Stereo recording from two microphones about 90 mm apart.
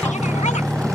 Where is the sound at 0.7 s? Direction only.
5° left (ahead or behind).